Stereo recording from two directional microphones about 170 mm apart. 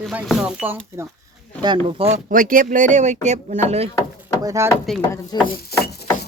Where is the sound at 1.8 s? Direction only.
35° right (ahead or behind).